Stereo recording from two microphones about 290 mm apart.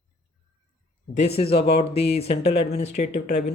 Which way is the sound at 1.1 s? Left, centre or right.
Left.